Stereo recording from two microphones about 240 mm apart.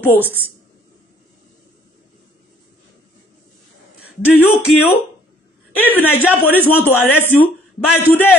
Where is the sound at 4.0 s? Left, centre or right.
Left.